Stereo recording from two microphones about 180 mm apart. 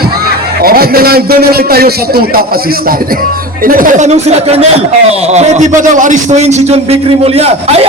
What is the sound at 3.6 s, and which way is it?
Speech, 50° right (ahead or behind).